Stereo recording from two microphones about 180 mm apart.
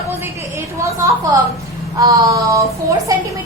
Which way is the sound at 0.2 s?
15° right (ahead or behind).